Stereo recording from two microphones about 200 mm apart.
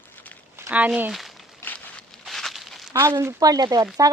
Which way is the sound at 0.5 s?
10° right (ahead or behind).